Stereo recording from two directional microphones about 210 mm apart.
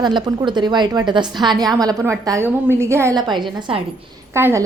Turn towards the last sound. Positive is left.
turn(degrees=-10)  # may be behind; listen again after turning